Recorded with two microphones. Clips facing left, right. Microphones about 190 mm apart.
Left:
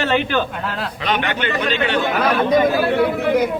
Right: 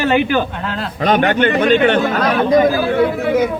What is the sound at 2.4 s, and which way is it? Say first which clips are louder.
Speech: right 3 dB; centre (ahead or behind).